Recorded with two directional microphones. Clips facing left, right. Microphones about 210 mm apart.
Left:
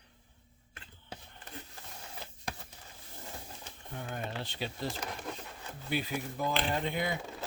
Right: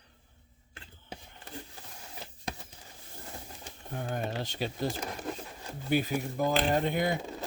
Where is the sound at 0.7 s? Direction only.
25° right (ahead or behind).